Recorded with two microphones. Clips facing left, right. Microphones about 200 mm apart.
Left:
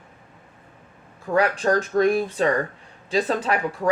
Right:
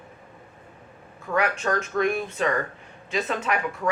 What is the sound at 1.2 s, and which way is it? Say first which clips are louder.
Speech: left 4 dB; 35° left (ahead or behind).